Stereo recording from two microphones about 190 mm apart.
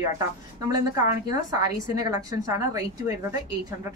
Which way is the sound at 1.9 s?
20° right (ahead or behind).